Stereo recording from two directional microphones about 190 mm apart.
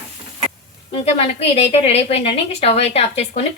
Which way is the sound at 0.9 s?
30° left (ahead or behind).